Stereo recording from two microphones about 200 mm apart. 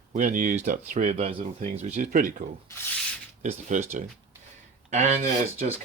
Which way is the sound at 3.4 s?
35° right (ahead or behind).